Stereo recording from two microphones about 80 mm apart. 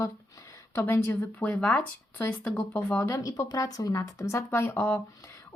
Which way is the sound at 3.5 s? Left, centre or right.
Left.